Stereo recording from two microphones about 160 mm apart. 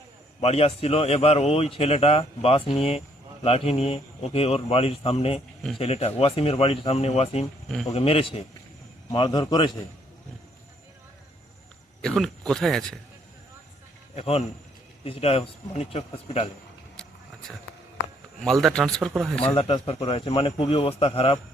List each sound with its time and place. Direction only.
0.4 s a man's voice: 40° left (ahead or behind)
12.0 s speech: centre (ahead or behind)
14.2 s a man's voice: 40° left (ahead or behind)
18.6 s speech: 5° left (ahead or behind)
19.5 s a man's voice: 35° left (ahead or behind)